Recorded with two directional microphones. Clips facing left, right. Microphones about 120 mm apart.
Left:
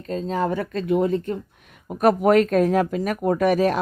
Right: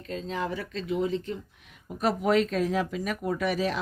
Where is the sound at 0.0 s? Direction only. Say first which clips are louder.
Left 8 dB; 40° left (ahead or behind).